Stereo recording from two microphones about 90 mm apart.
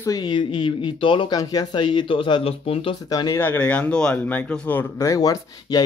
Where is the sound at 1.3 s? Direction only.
45° left (ahead or behind); by 2.9 s 90° left.